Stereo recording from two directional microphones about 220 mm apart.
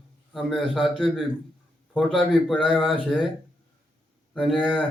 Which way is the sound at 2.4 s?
5° left (ahead or behind).